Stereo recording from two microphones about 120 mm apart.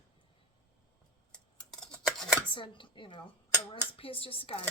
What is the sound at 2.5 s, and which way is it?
Speech, 45° left (ahead or behind).